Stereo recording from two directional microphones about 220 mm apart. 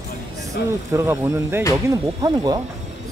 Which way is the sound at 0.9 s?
15° right (ahead or behind).